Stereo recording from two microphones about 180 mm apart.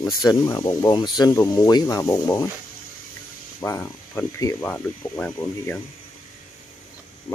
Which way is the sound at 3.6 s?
15° left (ahead or behind).